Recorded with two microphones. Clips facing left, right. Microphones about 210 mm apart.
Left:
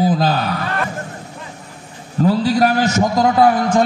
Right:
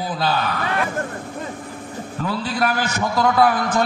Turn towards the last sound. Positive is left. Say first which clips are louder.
# left 4 dB
turn(degrees=30)  # may be behind; listen again after turning